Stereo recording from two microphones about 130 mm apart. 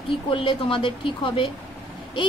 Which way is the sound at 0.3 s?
40° left (ahead or behind).